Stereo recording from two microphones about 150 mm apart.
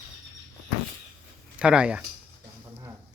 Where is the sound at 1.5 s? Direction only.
5° right (ahead or behind).